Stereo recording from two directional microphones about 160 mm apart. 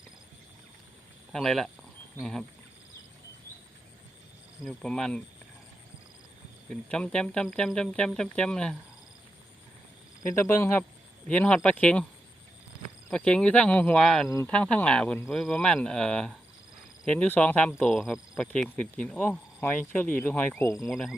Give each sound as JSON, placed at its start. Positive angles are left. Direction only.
{"t": 1.3, "sound": "speech", "side_deg": 0}
{"t": 4.6, "sound": "speech", "side_deg": 5}
{"t": 6.7, "sound": "speech", "side_deg": 5}
{"t": 10.3, "sound": "speech", "side_deg": 15}
{"t": 13.1, "sound": "speech", "side_deg": 5}
{"t": 20.9, "sound": "speech", "side_deg": 0}